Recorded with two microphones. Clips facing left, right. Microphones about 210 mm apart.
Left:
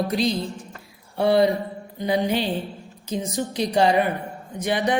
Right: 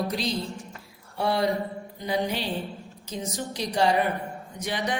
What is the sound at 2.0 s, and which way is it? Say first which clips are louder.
Speech: left 5 dB; 60° left (ahead or behind).